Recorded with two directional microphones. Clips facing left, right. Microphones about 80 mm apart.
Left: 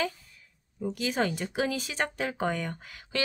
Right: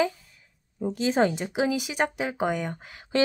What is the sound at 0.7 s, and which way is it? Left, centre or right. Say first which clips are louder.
Speech: right 6 dB; right.